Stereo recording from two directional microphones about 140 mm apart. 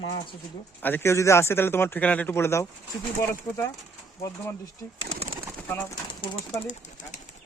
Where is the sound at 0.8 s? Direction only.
15° left (ahead or behind).